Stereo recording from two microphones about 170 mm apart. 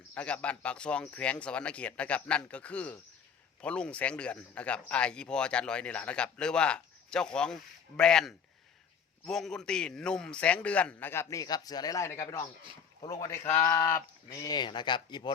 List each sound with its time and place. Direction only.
0.1 s speech: 5° left (ahead or behind); by 15.3 s 25° left (ahead or behind)